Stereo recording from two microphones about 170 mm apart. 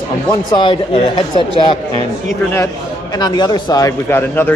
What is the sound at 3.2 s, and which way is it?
Speech, 25° left (ahead or behind).